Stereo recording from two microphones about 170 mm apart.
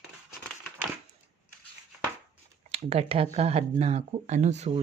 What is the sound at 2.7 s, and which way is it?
Speech, 35° right (ahead or behind).